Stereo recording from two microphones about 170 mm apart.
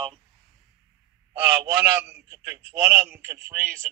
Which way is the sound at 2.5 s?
80° right.